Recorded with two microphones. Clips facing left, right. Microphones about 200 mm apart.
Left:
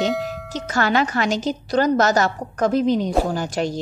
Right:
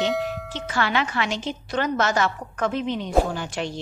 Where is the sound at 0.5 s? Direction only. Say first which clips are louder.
Left 6 dB; 40° left (ahead or behind).